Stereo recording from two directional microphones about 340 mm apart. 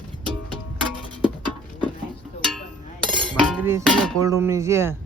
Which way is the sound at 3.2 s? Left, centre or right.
Centre.